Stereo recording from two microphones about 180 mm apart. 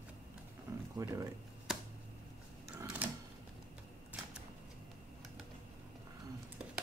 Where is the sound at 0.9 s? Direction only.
20° right (ahead or behind).